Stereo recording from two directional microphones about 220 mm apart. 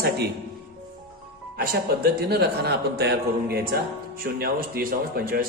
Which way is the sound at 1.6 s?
45° right (ahead or behind).